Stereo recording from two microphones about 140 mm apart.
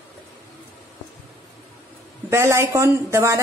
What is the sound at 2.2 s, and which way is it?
A woman's voice, 20° right (ahead or behind).